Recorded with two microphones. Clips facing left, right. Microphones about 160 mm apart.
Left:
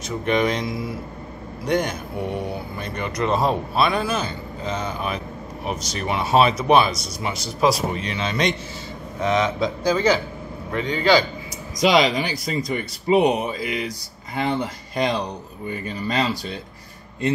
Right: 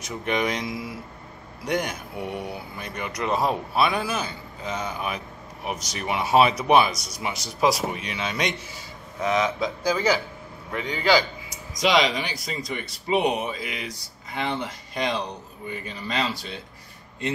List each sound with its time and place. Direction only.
0.0 s speech: 15° right (ahead or behind)
11.8 s speech: 5° left (ahead or behind)
13.8 s speech: 45° left (ahead or behind)
15.0 s speech: centre (ahead or behind)
15.7 s speech: 45° left (ahead or behind)